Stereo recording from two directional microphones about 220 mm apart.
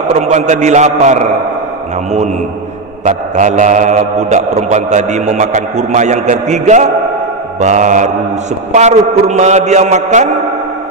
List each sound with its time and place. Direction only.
0.1 s mantra: 30° right (ahead or behind)
3.1 s mantra: 35° right (ahead or behind)